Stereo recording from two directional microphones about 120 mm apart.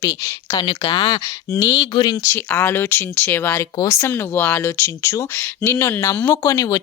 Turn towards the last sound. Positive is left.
turn(degrees=25)  # may be behind; listen again after turning